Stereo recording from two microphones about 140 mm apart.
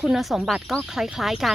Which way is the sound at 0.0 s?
Centre (ahead or behind).